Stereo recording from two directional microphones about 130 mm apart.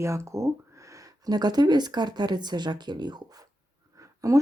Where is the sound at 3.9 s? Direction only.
25° right (ahead or behind).